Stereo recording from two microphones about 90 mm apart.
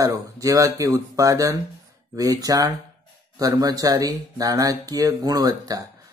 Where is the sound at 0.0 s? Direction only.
40° right (ahead or behind).